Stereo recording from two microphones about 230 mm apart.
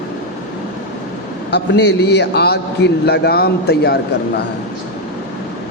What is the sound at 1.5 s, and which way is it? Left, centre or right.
A man's voice, left.